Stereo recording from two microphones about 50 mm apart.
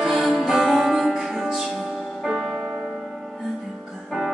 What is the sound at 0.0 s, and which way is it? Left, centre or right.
Music, centre.